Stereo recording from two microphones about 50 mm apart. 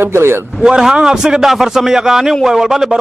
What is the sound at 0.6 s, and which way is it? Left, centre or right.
A man's voice, centre.